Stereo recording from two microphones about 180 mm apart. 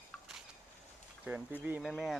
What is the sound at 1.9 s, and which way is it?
Speech, centre (ahead or behind).